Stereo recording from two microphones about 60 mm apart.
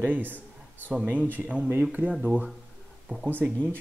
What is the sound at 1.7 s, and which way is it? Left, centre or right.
Speech, right.